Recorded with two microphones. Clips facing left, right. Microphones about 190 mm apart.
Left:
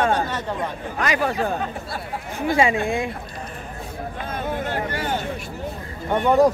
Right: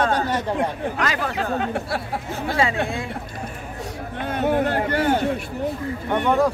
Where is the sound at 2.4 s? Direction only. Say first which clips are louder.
Left 3 dB; 15° left (ahead or behind).